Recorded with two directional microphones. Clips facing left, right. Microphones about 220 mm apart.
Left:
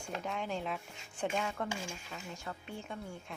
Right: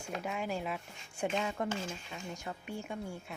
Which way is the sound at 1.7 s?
10° left (ahead or behind).